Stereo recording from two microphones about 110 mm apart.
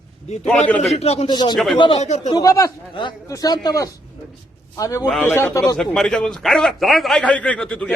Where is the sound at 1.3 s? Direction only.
40° left (ahead or behind).